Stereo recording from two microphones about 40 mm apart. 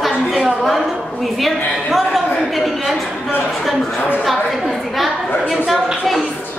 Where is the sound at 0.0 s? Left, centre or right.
Centre.